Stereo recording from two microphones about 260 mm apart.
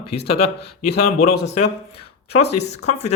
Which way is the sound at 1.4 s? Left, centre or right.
Left.